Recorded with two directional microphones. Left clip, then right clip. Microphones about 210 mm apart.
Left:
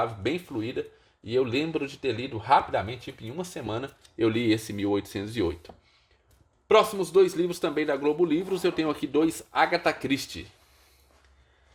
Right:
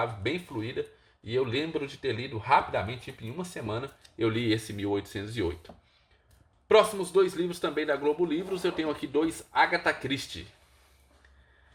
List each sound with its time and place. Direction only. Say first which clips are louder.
0.2 s speech: left 3 dB; 45° left (ahead or behind)